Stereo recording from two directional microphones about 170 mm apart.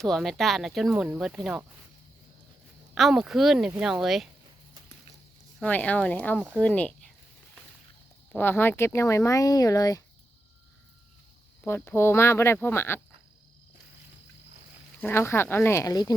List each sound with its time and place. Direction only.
0.0 s speech: centre (ahead or behind)
2.9 s speech: centre (ahead or behind)
5.5 s speech: 5° left (ahead or behind)
8.3 s speech: 10° left (ahead or behind)
11.6 s speech: 15° left (ahead or behind)
14.9 s speech: 15° left (ahead or behind)